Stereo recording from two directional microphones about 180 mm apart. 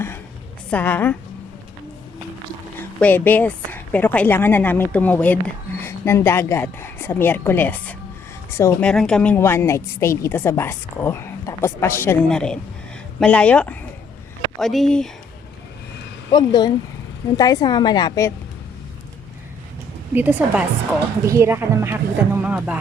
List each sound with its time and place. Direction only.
0.7 s a woman's voice: 10° left (ahead or behind)
2.7 s a woman's voice: 10° left (ahead or behind)
12.3 s a woman's voice: 5° left (ahead or behind)
16.3 s a woman's voice: 25° left (ahead or behind)
20.1 s speech: 10° right (ahead or behind)